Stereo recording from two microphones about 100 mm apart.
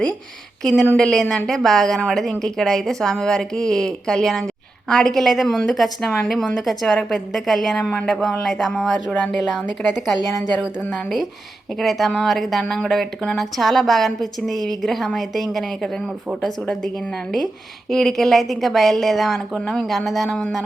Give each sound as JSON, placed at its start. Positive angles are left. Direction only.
{"t": 0.6, "sound": "speech", "side_deg": 5}
{"t": 10.2, "sound": "a woman's voice", "side_deg": 40}
{"t": 10.9, "sound": "speech", "side_deg": 0}